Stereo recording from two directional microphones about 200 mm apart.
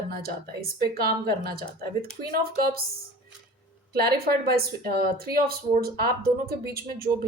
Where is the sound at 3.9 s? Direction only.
50° right (ahead or behind).